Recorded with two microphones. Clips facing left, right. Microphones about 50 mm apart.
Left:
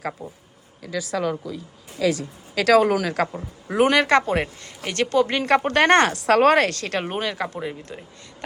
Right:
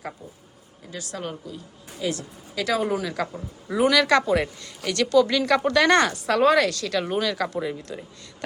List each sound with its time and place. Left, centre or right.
0.2 s speech: left
1.1 s speech: left
2.6 s speech: left
3.7 s speech: left
6.1 s a man's voice: left